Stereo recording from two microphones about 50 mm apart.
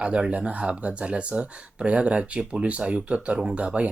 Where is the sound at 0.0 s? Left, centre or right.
Right.